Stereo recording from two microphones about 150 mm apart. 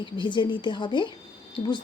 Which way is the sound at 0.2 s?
30° left (ahead or behind).